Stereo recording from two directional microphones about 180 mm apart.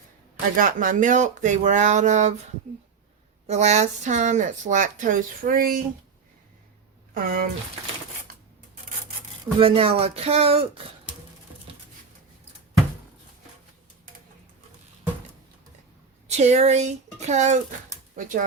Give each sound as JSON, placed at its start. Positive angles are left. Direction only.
{"t": 0.5, "sound": "speech", "side_deg": -50}
{"t": 3.4, "sound": "speech", "side_deg": -40}
{"t": 7.1, "sound": "speech", "side_deg": -50}
{"t": 8.3, "sound": "a sound", "side_deg": -50}
{"t": 9.6, "sound": "speech", "side_deg": -30}
{"t": 16.3, "sound": "speech", "side_deg": -40}